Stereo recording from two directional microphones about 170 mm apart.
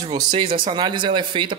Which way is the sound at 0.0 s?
25° right (ahead or behind).